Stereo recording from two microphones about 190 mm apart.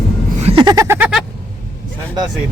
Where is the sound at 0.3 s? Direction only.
30° right (ahead or behind); by 1.2 s 10° right (ahead or behind).